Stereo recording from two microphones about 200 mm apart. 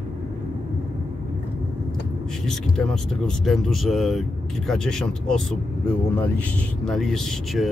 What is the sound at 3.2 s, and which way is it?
Speech, centre (ahead or behind).